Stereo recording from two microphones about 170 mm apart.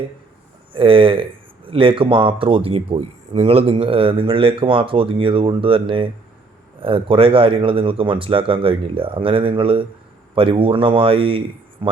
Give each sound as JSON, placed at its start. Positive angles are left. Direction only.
{"t": 0.7, "sound": "speech", "side_deg": -30}